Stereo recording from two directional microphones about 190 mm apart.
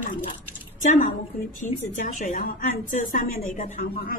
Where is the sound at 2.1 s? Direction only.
45° left (ahead or behind).